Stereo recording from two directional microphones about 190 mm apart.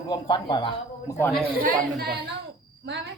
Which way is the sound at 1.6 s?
55° right (ahead or behind).